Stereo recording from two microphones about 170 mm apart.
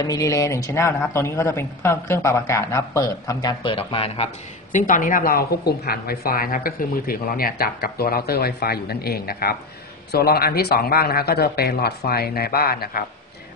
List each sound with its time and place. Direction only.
0.0 s speech: 20° left (ahead or behind); by 4.3 s 35° left (ahead or behind)
4.7 s a woman's voice: 50° left (ahead or behind)